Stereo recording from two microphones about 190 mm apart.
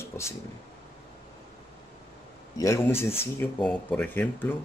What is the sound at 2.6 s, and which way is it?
Speech, 15° left (ahead or behind).